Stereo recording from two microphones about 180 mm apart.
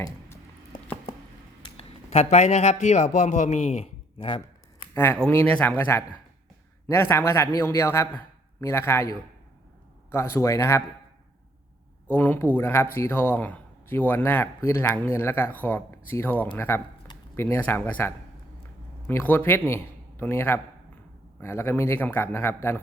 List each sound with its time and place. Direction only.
0.7 s patter: 50° left (ahead or behind)
1.6 s a man's voice: 35° left (ahead or behind)
4.9 s a man's voice: 10° left (ahead or behind)
12.1 s a man's voice: 10° left (ahead or behind)